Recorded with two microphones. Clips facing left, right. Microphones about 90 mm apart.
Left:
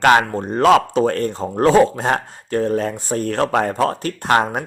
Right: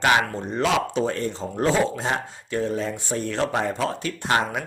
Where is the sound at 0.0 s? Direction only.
50° left (ahead or behind).